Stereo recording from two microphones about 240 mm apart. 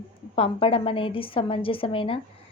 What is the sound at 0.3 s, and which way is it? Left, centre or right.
Speech, left.